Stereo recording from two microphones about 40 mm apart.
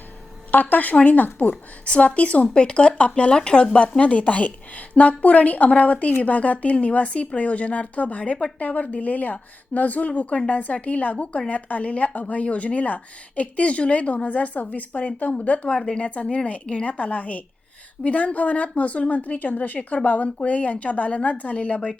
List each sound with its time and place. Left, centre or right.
0.5 s a woman's voice: left
1.8 s a woman's voice: left
10.1 s a woman's voice: left